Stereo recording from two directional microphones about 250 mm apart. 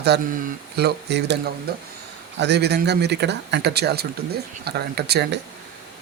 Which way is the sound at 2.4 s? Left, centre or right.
Right.